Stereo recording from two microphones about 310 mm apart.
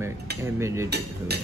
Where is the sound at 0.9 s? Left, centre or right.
Right.